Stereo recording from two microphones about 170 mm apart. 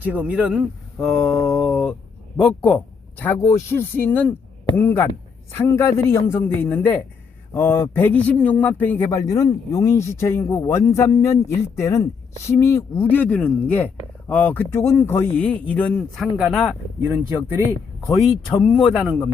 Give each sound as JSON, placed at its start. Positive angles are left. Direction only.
{"t": 0.0, "sound": "speech", "side_deg": -10}
{"t": 0.9, "sound": "mantra", "side_deg": 5}
{"t": 2.4, "sound": "speech", "side_deg": 5}
{"t": 17.0, "sound": "speech", "side_deg": -10}
{"t": 18.5, "sound": "speech", "side_deg": 30}
{"t": 18.9, "sound": "mantra", "side_deg": 0}